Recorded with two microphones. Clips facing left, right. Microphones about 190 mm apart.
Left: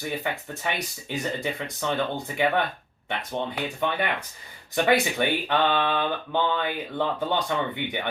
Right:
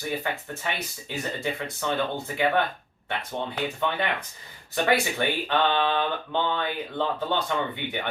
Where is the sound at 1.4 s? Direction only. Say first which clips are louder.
Even; 15° left (ahead or behind).